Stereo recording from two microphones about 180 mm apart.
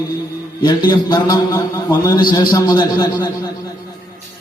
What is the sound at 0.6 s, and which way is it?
Music, 25° left (ahead or behind).